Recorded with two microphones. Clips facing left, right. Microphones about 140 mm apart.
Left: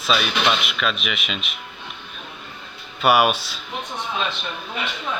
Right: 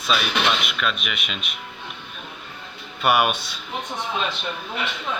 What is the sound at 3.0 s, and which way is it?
Speech, 5° left (ahead or behind).